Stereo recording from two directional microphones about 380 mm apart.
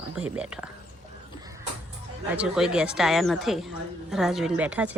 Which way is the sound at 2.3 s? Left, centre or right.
Centre.